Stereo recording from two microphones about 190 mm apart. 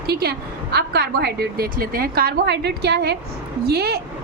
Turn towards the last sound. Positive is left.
turn(degrees=-55)  # may be behind; listen again after turning